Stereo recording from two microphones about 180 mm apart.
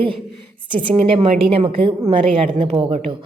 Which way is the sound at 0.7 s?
30° right (ahead or behind).